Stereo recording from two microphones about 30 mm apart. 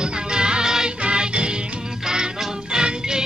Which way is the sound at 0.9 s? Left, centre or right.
Right.